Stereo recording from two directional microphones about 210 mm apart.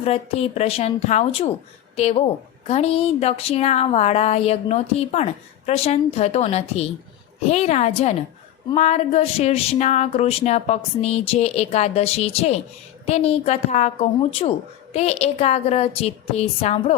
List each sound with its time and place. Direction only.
0.0 s a woman's voice: 30° left (ahead or behind)